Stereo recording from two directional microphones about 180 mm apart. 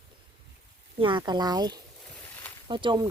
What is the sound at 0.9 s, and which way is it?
Speech, 25° right (ahead or behind).